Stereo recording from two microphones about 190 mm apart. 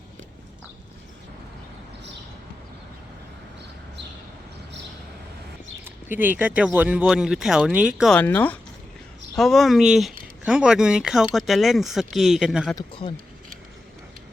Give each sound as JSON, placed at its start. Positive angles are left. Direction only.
{"t": 5.8, "sound": "speech", "side_deg": -10}
{"t": 8.2, "sound": "speech", "side_deg": 10}
{"t": 12.7, "sound": "a man's voice", "side_deg": 25}